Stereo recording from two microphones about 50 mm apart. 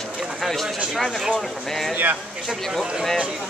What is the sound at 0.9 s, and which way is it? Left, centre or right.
Speech, centre.